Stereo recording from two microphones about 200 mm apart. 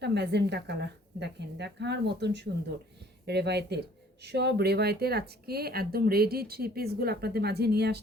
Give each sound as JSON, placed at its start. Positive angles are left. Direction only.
{"t": 0.0, "sound": "a woman's voice", "side_deg": -55}